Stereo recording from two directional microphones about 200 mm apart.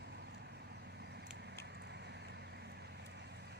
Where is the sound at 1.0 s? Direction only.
60° right (ahead or behind).